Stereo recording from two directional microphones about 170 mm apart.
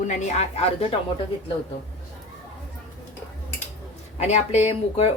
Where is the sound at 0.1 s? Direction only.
45° left (ahead or behind).